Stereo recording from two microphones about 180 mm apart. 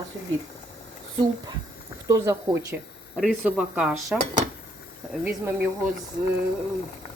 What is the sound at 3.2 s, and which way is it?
Speech, 5° right (ahead or behind).